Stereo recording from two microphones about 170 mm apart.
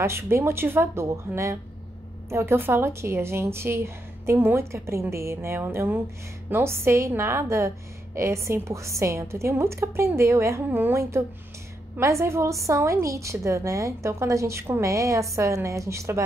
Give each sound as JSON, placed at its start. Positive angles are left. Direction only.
{"t": 0.0, "sound": "a woman's voice", "side_deg": -15}